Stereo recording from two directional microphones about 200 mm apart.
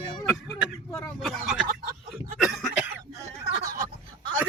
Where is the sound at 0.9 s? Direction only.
Centre (ahead or behind).